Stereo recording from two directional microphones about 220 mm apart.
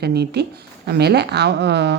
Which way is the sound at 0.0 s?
45° right (ahead or behind).